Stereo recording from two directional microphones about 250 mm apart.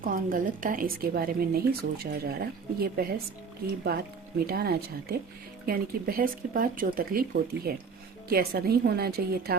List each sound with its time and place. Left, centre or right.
0.0 s speech: right